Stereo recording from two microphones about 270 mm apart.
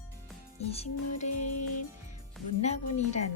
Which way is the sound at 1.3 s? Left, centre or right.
Left.